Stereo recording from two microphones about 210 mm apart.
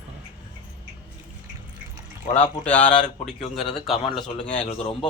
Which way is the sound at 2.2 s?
30° left (ahead or behind).